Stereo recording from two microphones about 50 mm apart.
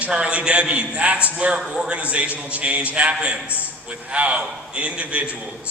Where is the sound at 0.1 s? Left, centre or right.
Right.